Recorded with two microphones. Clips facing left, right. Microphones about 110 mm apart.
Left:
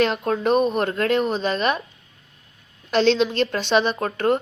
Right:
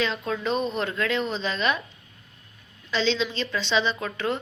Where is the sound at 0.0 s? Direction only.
60° left (ahead or behind).